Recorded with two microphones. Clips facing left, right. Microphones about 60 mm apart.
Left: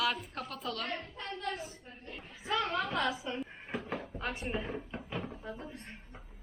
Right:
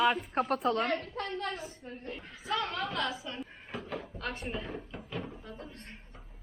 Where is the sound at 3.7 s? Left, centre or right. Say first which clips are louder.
Left 1 dB; left.